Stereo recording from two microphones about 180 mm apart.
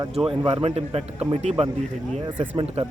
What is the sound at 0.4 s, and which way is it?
Speech, 30° right (ahead or behind).